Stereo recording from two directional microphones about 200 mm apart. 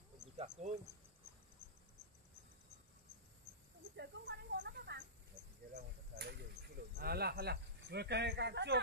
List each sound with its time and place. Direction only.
0.4 s speech: 35° right (ahead or behind)
3.9 s a sound: 55° right (ahead or behind)
5.7 s cricket: 50° right (ahead or behind)
7.0 s speech: 50° right (ahead or behind)